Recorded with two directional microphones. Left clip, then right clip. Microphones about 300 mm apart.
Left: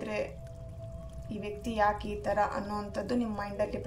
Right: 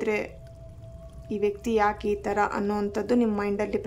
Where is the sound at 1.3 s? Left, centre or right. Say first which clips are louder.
Right 11 dB; centre.